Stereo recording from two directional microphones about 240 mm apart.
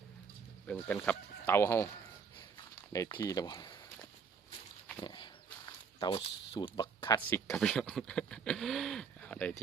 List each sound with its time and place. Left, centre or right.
0.7 s speech: centre
2.9 s speech: centre
4.9 s dog: centre
6.0 s speech: left; by 9.6 s centre